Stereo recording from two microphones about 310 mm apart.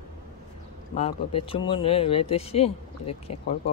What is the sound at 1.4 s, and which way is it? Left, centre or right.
Speech, centre.